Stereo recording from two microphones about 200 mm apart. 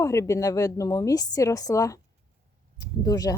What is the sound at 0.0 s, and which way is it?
Speech, 15° left (ahead or behind).